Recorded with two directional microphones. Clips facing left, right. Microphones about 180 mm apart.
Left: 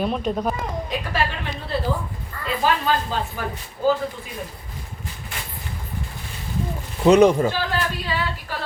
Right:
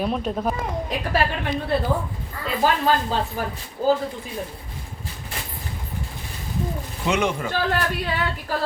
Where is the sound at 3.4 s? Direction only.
45° right (ahead or behind).